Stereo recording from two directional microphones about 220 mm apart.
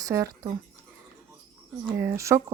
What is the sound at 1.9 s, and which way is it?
Speech, 10° right (ahead or behind).